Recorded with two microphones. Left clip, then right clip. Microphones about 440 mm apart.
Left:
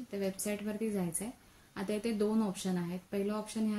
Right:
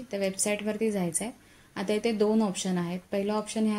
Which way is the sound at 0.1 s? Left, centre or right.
Left.